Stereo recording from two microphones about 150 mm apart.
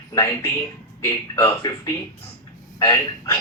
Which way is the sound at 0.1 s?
25° left (ahead or behind).